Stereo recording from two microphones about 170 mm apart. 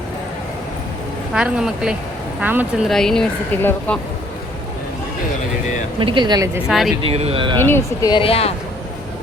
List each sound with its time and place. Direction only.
1.3 s speech: 5° right (ahead or behind)
2.9 s speech: 5° left (ahead or behind)
6.0 s speech: 30° right (ahead or behind)
6.7 s speech: centre (ahead or behind)
7.0 s speech: 35° right (ahead or behind)
7.6 s speech: 15° left (ahead or behind)
8.2 s speech: 35° left (ahead or behind)